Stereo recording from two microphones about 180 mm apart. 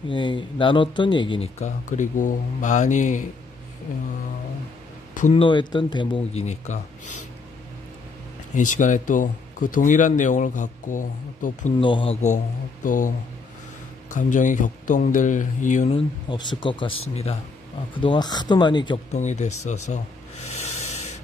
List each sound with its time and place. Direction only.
0.1 s a man's voice: 25° left (ahead or behind)
1.6 s speech: 45° left (ahead or behind)
5.3 s a man's voice: 25° left (ahead or behind)
8.5 s speech: 45° left (ahead or behind)
11.8 s speech: 30° left (ahead or behind)
12.8 s speech: 45° left (ahead or behind)
14.1 s speech: 45° left (ahead or behind)
16.3 s a man's voice: 25° left (ahead or behind)
19.1 s speech: 40° left (ahead or behind)